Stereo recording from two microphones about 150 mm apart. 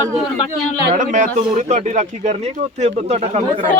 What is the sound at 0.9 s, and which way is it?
Speech, 60° right (ahead or behind).